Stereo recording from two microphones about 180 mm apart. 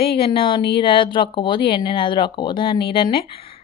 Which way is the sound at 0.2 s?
30° left (ahead or behind).